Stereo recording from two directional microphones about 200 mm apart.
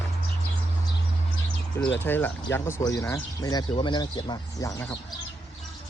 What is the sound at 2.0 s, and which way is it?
Speech, 10° left (ahead or behind).